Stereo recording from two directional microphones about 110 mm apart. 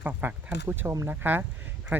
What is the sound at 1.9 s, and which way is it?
Speech, 15° right (ahead or behind).